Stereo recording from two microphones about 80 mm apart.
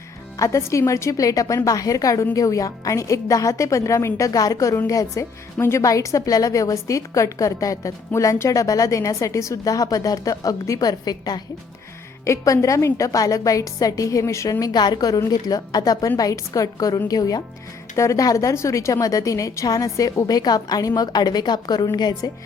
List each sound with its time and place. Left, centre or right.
0.3 s a woman's voice: left
5.5 s a woman's voice: left
5.8 s a woman's voice: left
12.2 s a woman's voice: left
17.9 s a woman's voice: left